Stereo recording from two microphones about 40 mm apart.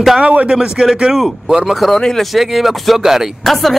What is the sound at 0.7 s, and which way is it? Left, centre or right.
Speech, centre.